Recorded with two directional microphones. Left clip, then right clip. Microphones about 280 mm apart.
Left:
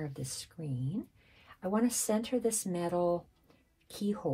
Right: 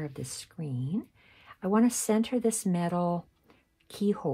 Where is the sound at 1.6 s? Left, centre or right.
Right.